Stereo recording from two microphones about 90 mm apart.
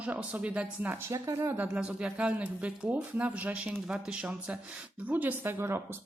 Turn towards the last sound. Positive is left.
turn(degrees=-25)  # may be behind; listen again after turning